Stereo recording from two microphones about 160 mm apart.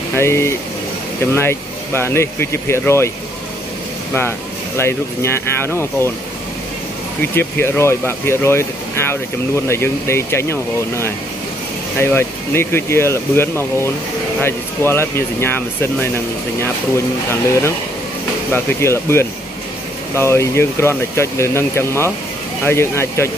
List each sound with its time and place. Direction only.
0.1 s speech: 15° left (ahead or behind)
4.7 s speech: 15° left (ahead or behind)
7.2 s speech: 15° left (ahead or behind)
9.7 s speech: 15° left (ahead or behind)
18.5 s speech: 15° left (ahead or behind)